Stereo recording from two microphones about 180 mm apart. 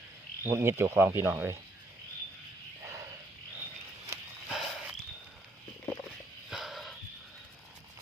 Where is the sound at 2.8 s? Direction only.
15° right (ahead or behind).